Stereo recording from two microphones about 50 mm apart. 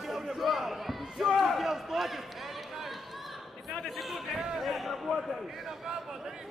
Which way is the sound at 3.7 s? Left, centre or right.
Centre.